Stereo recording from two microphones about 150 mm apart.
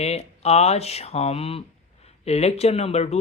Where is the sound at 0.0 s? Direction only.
45° left (ahead or behind).